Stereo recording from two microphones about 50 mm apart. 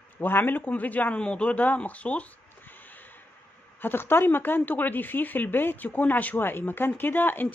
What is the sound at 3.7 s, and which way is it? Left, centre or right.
Speech, left.